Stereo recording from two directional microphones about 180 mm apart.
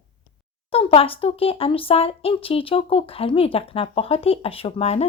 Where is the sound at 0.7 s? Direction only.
30° left (ahead or behind).